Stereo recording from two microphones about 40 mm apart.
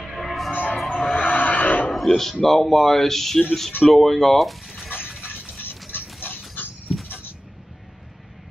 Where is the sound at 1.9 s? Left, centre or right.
Centre.